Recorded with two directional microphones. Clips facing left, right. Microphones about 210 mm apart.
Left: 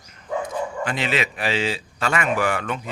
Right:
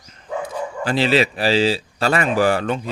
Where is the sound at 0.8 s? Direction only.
30° right (ahead or behind).